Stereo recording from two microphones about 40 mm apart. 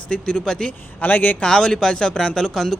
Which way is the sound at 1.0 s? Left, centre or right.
Left.